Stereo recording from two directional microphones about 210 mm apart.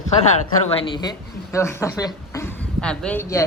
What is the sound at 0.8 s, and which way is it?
Speech, 20° left (ahead or behind).